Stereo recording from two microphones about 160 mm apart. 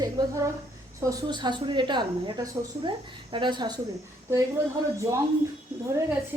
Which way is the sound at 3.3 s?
30° right (ahead or behind).